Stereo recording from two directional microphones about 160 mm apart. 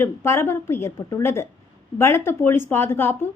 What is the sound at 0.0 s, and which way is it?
A man's voice, 15° left (ahead or behind).